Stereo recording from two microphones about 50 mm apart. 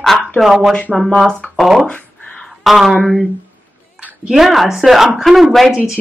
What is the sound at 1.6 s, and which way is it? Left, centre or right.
Speech, centre.